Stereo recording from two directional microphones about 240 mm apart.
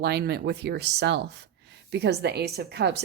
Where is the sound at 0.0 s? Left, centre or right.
Right.